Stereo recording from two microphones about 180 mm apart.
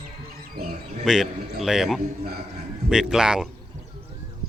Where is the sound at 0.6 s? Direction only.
55° right (ahead or behind).